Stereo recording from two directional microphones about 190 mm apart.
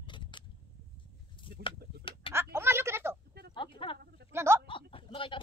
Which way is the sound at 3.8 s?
25° left (ahead or behind).